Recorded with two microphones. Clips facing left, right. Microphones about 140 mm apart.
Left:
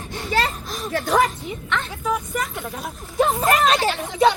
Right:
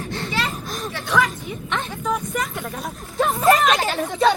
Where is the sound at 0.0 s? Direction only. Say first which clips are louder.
Right 4 dB; 15° left (ahead or behind).